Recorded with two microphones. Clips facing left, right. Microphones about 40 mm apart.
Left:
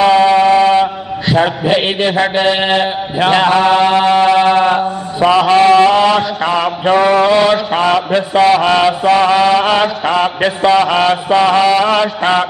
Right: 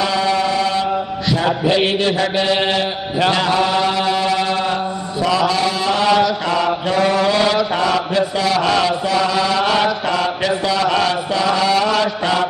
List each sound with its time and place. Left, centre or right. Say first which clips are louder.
0.0 s mantra: left 9 dB; left
6.0 s mantra: left 2 dB; left